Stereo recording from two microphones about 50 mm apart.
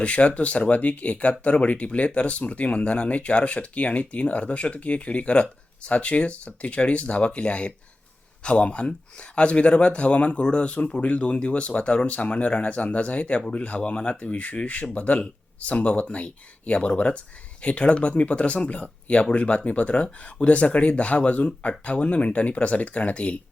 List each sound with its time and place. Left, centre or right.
0.0 s speech: left